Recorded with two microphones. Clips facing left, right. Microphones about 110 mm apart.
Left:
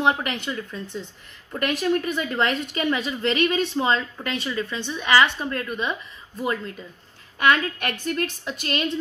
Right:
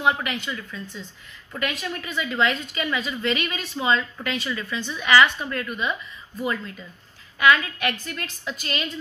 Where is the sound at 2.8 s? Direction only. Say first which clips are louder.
Left 3 dB; 35° left (ahead or behind).